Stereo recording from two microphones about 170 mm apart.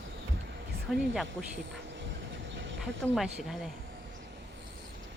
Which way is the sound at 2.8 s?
Centre (ahead or behind).